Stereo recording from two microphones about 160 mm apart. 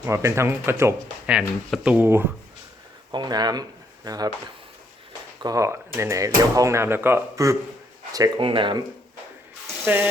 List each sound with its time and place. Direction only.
0.0 s speech: 20° right (ahead or behind)
3.1 s speech: 25° right (ahead or behind)
5.4 s speech: 20° right (ahead or behind)
8.1 s speech: 30° right (ahead or behind)
9.8 s speech: 10° right (ahead or behind)